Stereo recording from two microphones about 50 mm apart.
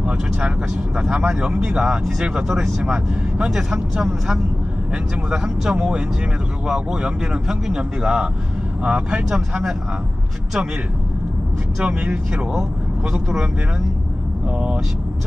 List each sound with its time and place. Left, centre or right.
1.1 s speech: centre
11.8 s speech: right
13.1 s speech: centre